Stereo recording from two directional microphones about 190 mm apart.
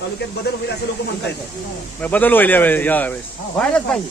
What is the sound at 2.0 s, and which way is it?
A man's voice, 10° left (ahead or behind).